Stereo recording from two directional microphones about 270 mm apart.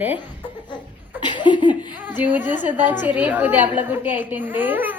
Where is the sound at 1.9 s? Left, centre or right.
Centre.